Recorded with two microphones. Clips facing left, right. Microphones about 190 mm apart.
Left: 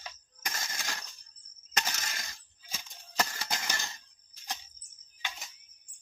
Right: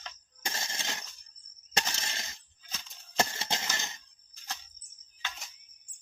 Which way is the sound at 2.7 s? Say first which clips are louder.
Left 1 dB; 10° left (ahead or behind).